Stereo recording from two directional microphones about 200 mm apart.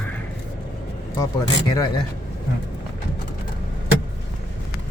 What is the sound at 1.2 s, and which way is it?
Speech, 20° left (ahead or behind).